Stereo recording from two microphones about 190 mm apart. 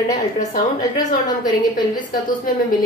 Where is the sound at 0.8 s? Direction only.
20° left (ahead or behind).